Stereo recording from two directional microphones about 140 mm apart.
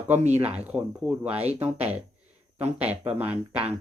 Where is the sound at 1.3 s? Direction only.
50° right (ahead or behind).